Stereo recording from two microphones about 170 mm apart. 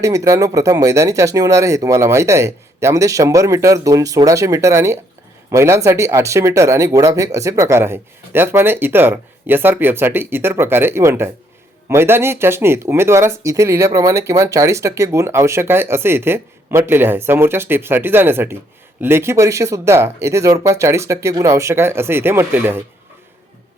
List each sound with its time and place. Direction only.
0.0 s speech: 20° right (ahead or behind)